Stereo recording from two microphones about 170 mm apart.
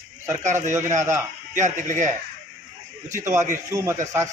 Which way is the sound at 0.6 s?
45° right (ahead or behind).